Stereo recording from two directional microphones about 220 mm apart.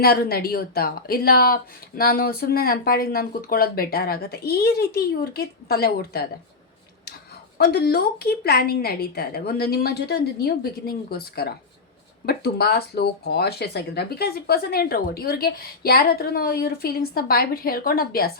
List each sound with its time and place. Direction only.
0.0 s speech: 45° left (ahead or behind)
7.6 s speech: 45° left (ahead or behind)